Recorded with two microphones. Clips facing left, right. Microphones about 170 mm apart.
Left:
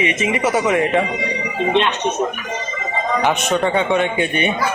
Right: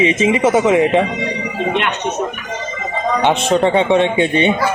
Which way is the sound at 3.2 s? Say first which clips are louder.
Right 5 dB; 30° right (ahead or behind).